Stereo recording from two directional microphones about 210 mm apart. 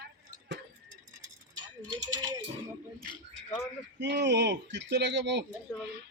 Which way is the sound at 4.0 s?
55° right (ahead or behind).